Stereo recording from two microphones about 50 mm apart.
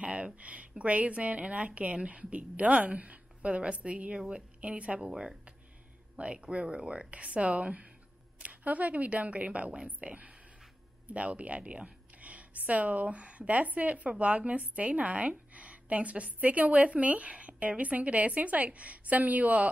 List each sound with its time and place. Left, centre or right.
0.0 s speech: right
5.1 s speech: centre; by 19.7 s right